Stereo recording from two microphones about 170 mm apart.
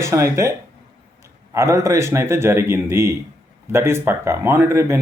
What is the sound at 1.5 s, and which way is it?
Speech, 15° right (ahead or behind).